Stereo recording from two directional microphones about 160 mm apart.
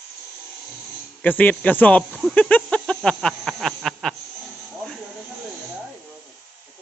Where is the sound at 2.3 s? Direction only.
10° left (ahead or behind).